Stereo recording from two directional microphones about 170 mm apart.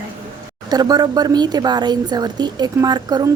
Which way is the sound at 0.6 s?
20° right (ahead or behind).